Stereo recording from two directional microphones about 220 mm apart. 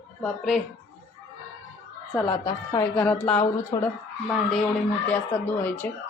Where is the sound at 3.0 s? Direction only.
5° left (ahead or behind).